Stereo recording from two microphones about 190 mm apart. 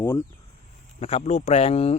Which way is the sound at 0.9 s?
35° left (ahead or behind).